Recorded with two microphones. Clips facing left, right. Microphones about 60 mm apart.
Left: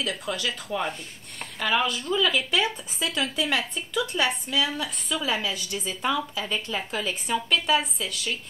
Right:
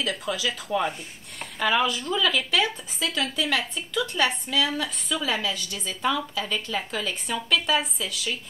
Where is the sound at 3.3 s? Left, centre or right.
Left.